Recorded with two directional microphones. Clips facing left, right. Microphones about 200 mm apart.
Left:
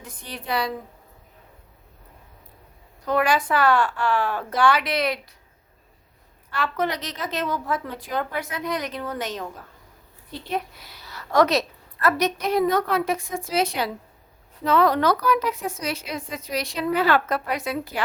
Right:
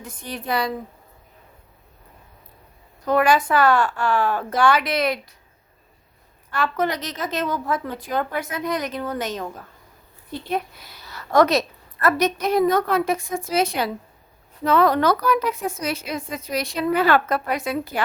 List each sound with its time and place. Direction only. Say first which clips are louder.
0.0 s a woman's voice: right 5 dB; 45° right (ahead or behind)
3.1 s a woman's voice: right 3 dB; 45° right (ahead or behind)
6.5 s a woman's voice: right 2 dB; 45° right (ahead or behind)
10.5 s a woman's voice: right 2 dB; 50° right (ahead or behind)